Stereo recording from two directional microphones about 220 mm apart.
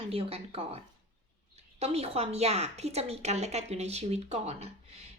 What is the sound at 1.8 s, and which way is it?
A woman's voice, 30° right (ahead or behind).